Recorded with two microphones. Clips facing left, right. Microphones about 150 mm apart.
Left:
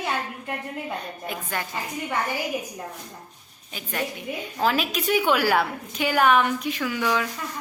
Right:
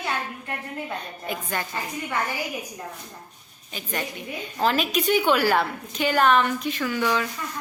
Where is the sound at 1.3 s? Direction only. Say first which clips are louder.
Right 2 dB; centre (ahead or behind).